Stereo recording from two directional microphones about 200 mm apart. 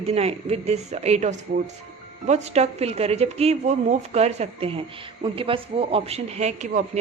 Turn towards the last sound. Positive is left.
turn(degrees=-35)  # may be behind; listen again after turning